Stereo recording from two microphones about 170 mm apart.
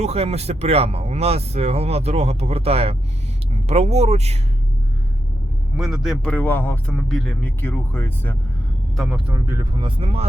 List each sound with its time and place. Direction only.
0.0 s speech: 35° right (ahead or behind)
5.7 s a man's voice: centre (ahead or behind)
6.3 s speech: 10° left (ahead or behind)
9.0 s speech: 5° right (ahead or behind)
9.7 s speech: 30° right (ahead or behind)